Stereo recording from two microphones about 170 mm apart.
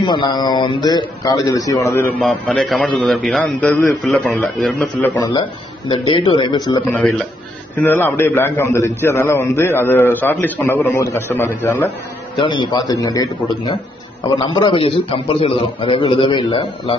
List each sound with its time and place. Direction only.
0.0 s speech: 25° left (ahead or behind)
2.1 s a man's voice: 5° left (ahead or behind)
5.2 s speech: 25° left (ahead or behind)
6.9 s a man's voice: 5° left (ahead or behind)
12.4 s a man's voice: 25° left (ahead or behind)